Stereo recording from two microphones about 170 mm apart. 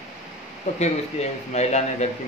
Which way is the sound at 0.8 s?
40° left (ahead or behind).